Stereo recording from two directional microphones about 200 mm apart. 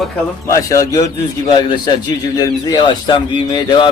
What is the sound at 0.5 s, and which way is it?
A man's voice, 15° left (ahead or behind).